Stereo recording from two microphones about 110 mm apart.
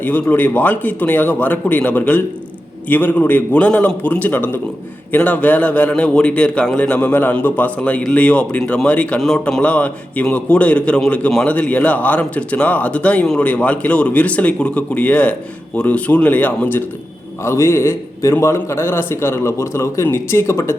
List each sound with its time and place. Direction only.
0.0 s a man's voice: 15° left (ahead or behind)